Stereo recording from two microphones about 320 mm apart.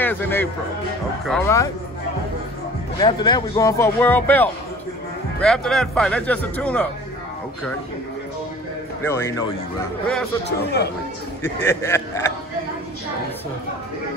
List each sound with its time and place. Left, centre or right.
0.0 s a man's voice: centre
3.0 s a man's voice: centre
9.0 s speech: centre
10.6 s speech: left
11.4 s speech: centre